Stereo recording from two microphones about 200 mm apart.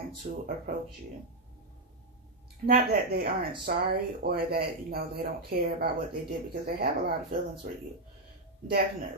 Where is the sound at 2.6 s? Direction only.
50° right (ahead or behind).